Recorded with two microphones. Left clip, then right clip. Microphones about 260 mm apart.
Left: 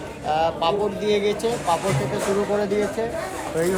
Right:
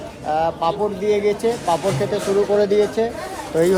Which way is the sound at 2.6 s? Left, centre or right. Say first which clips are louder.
Right 6 dB; right.